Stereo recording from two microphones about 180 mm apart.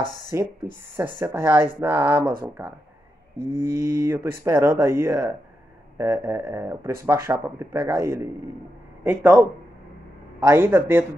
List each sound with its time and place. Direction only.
0.3 s speech: 15° right (ahead or behind)
10.4 s speech: 15° right (ahead or behind)